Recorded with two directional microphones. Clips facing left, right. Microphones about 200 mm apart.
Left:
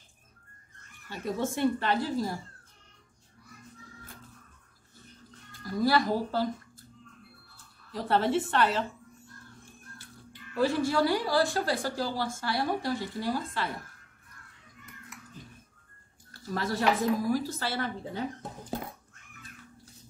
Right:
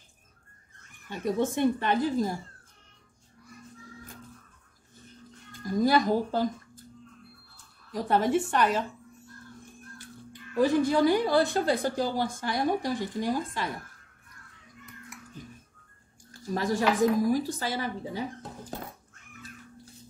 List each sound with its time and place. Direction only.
1.0 s a woman's voice: 15° right (ahead or behind)
5.6 s a woman's voice: 20° right (ahead or behind)
7.9 s a woman's voice: 15° right (ahead or behind)
10.5 s a woman's voice: 15° right (ahead or behind)
16.3 s a woman's voice: 15° right (ahead or behind)